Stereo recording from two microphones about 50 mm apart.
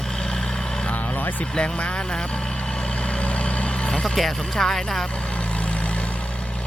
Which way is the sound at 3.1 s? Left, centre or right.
Left.